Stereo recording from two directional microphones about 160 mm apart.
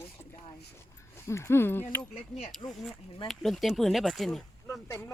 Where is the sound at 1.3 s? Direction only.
15° left (ahead or behind).